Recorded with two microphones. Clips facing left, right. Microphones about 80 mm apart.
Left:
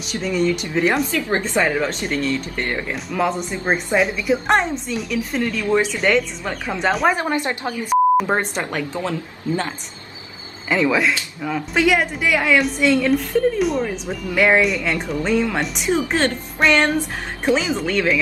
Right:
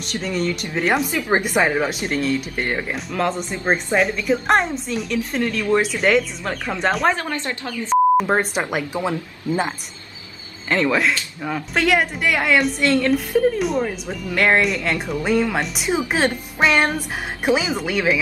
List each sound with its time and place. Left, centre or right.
0.0 s a woman's voice: centre
1.1 s speech: centre
3.1 s a woman's voice: centre
7.2 s speech: centre
8.2 s speech: centre
10.7 s a woman's voice: centre